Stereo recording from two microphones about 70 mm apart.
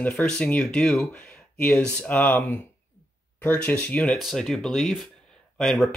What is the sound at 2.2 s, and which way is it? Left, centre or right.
Speech, left.